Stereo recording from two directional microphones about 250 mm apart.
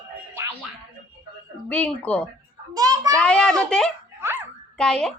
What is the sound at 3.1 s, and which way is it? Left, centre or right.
Speech, centre.